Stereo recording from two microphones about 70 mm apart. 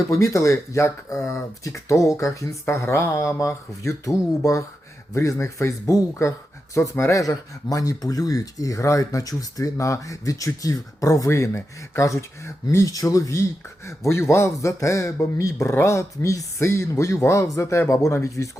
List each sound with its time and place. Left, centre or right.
0.1 s speech: left
5.1 s speech: left
15.7 s speech: left